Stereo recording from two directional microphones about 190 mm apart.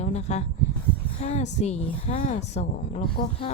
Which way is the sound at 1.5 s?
35° left (ahead or behind).